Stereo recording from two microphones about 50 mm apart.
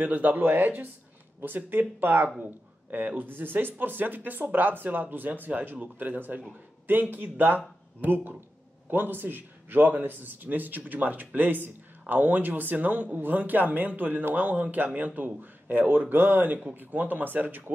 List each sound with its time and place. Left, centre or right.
0.0 s a man's voice: right
0.4 s a man's voice: right